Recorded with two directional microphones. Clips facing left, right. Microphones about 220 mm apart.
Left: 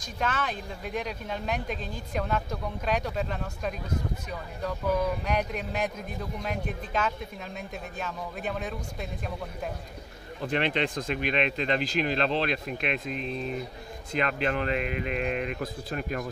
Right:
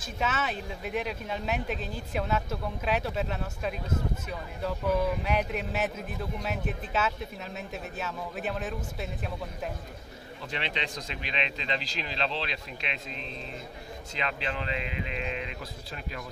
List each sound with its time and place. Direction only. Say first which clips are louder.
0.0 s speech: even; 5° right (ahead or behind)
10.4 s speech: left 8 dB; 50° left (ahead or behind)